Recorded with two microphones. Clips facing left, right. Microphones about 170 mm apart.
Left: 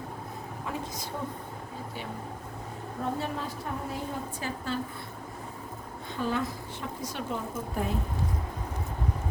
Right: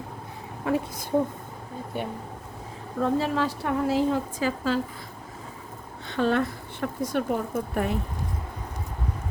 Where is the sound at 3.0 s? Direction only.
90° right.